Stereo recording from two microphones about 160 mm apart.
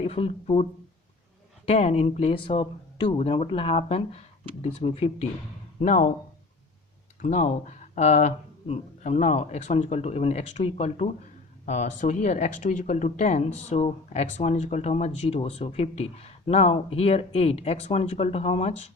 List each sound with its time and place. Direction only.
0.0 s speech: 40° left (ahead or behind)
5.8 s speech: 50° left (ahead or behind)
7.2 s speech: 50° left (ahead or behind)